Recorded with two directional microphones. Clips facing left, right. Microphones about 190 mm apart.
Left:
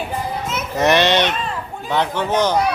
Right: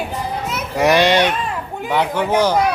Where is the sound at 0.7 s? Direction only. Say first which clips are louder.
Right 2 dB; 10° right (ahead or behind).